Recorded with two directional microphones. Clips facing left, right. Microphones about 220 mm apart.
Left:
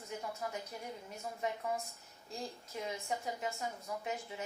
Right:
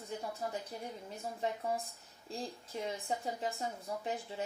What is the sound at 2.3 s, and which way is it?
A woman's voice, 30° right (ahead or behind).